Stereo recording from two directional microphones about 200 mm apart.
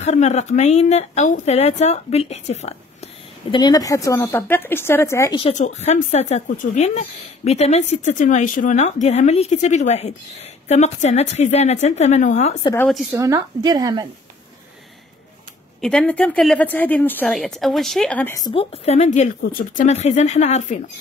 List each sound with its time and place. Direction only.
0.0 s a woman's voice: 35° left (ahead or behind)
3.5 s a woman's voice: 20° left (ahead or behind)
5.4 s a woman's voice: 35° left (ahead or behind)
12.7 s speech: 5° left (ahead or behind)
13.1 s a woman's voice: 15° right (ahead or behind)
15.8 s speech: 5° left (ahead or behind)
18.5 s a woman's voice: 30° left (ahead or behind)